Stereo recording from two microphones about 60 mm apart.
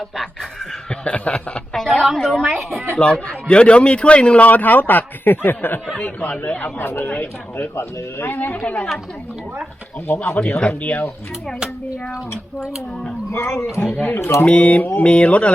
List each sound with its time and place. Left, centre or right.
0.9 s speech: centre
1.7 s a woman's voice: centre
3.0 s a man's voice: centre
6.0 s a man's voice: left
6.7 s speech: left
8.3 s a man's voice: left
10.1 s a man's voice: left
13.3 s speech: left
14.2 s speech: left
14.4 s a man's voice: left